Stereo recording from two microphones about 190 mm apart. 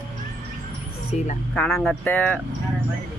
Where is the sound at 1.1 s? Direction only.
35° left (ahead or behind).